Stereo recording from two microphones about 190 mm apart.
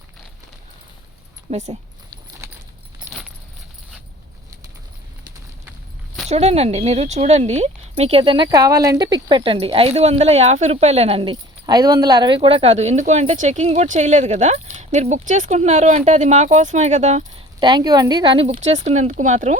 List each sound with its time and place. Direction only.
1.5 s speech: 35° right (ahead or behind)
3.1 s keys jangling: centre (ahead or behind)
6.2 s speech: 35° right (ahead or behind)
17.6 s a woman's voice: 20° right (ahead or behind)
18.5 s speech: 40° right (ahead or behind)